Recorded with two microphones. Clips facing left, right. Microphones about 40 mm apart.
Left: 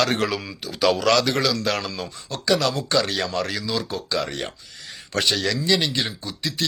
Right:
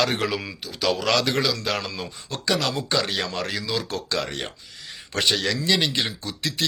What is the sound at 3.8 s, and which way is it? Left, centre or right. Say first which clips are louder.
Speech: left 1 dB; right.